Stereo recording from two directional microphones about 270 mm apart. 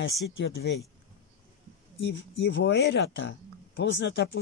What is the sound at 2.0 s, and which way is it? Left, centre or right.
Speech, left.